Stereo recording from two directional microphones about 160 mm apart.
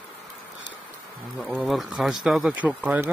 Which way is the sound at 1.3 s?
5° right (ahead or behind).